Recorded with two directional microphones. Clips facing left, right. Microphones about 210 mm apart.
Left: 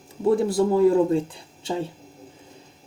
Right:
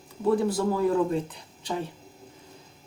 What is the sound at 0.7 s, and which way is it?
Speech, 30° left (ahead or behind).